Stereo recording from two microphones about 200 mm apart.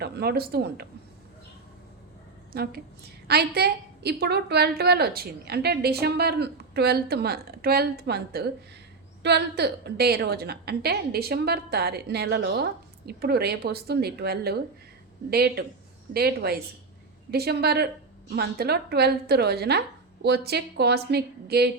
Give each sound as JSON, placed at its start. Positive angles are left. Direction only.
{"t": 0.0, "sound": "a woman's voice", "side_deg": -50}
{"t": 2.5, "sound": "a woman's voice", "side_deg": -50}